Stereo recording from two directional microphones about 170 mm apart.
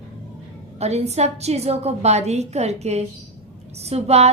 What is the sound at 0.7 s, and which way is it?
A woman's voice, 40° right (ahead or behind).